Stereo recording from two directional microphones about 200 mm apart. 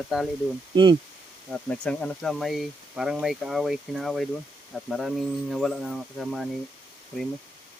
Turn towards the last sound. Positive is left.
turn(degrees=0)  # may be behind; listen again after turning